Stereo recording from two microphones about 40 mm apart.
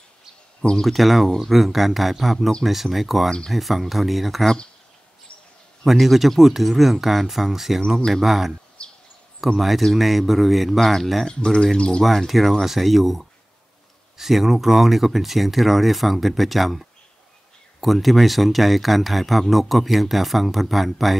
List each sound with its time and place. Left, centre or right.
0.8 s speech: centre
5.9 s speech: centre
8.8 s a sound: left
9.6 s speech: centre
11.2 s speech: centre
12.0 s speech: centre